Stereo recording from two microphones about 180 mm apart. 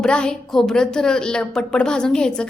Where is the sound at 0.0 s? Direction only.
5° left (ahead or behind).